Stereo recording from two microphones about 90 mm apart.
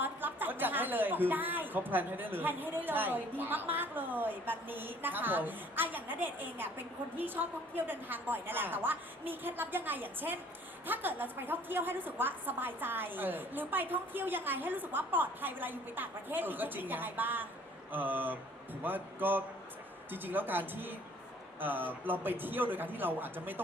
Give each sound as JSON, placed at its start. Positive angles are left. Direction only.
{"t": 0.0, "sound": "a woman's voice", "side_deg": -20}